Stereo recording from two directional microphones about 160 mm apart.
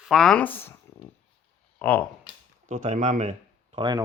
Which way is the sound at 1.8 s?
10° left (ahead or behind).